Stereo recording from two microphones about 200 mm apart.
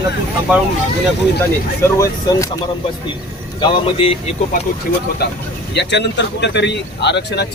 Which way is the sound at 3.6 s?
25° left (ahead or behind).